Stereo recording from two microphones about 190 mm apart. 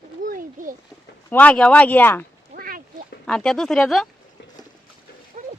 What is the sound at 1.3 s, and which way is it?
Speech, 10° left (ahead or behind).